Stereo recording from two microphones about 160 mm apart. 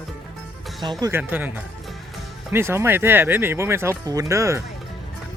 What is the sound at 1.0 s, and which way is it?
Speech, 15° right (ahead or behind).